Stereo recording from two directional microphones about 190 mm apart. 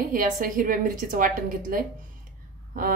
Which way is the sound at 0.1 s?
45° right (ahead or behind).